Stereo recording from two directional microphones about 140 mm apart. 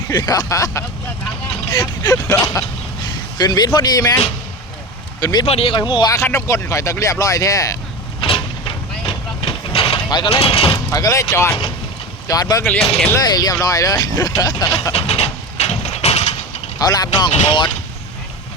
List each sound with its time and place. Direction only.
0.1 s speech: 20° left (ahead or behind)
5.2 s speech: 30° left (ahead or behind)
5.5 s speech: 40° left (ahead or behind); by 7.8 s 25° left (ahead or behind)
8.2 s vehicle: 40° left (ahead or behind)
10.1 s speech: 30° left (ahead or behind)
10.4 s speech: 45° left (ahead or behind)
10.9 s speech: 25° left (ahead or behind)
12.6 s speech: 10° left (ahead or behind)
13.1 s speech: 30° left (ahead or behind)
14.9 s vehicle: 45° left (ahead or behind)
16.7 s speech: 25° left (ahead or behind)